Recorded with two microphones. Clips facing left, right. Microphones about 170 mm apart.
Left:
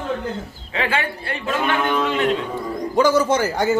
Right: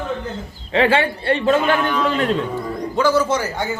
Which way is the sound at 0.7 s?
30° right (ahead or behind).